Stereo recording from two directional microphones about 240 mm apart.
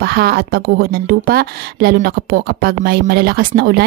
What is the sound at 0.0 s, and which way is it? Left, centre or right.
A woman's voice, right.